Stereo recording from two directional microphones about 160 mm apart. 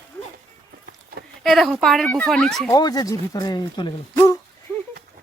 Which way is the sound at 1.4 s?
Centre (ahead or behind).